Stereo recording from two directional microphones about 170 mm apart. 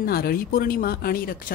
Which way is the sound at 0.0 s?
60° left (ahead or behind).